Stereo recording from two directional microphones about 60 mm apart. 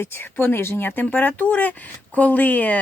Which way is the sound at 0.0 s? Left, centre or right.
Left.